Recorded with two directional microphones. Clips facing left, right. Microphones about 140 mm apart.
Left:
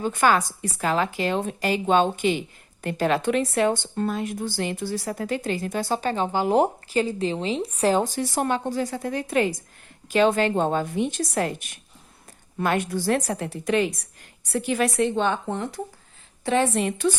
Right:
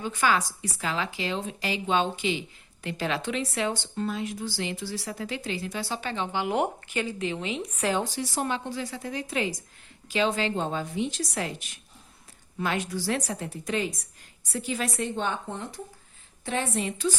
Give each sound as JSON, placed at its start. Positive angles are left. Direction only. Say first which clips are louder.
{"t": 0.0, "sound": "a woman's voice", "louder": "left 5 dB", "side_deg": 50}
{"t": 16.5, "sound": "a woman's voice", "louder": "left 7 dB", "side_deg": 75}